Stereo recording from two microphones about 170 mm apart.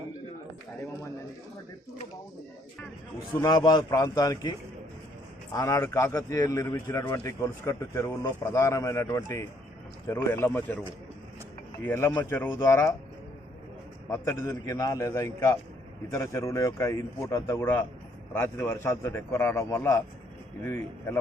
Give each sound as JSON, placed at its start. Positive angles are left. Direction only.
{"t": 3.3, "sound": "a man's voice", "side_deg": 20}
{"t": 5.5, "sound": "a man's voice", "side_deg": 15}
{"t": 11.8, "sound": "a man's voice", "side_deg": 15}
{"t": 14.1, "sound": "a man's voice", "side_deg": 15}